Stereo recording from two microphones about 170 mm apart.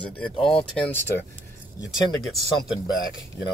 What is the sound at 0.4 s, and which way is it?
Speech, 30° left (ahead or behind).